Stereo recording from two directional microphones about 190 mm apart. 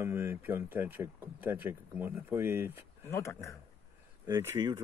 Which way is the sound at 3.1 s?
15° left (ahead or behind).